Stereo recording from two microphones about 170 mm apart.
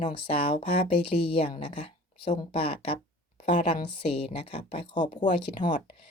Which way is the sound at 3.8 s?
30° left (ahead or behind).